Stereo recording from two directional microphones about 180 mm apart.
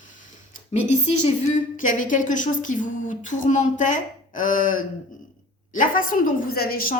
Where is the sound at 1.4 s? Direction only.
45° left (ahead or behind).